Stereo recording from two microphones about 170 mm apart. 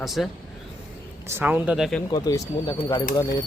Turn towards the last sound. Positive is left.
turn(degrees=25)  # may be behind; listen again after turning